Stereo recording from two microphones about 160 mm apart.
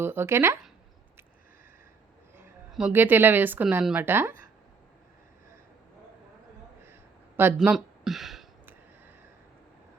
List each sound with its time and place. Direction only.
0.0 s speech: 15° right (ahead or behind)
2.7 s speech: 10° right (ahead or behind)
7.3 s speech: 10° right (ahead or behind)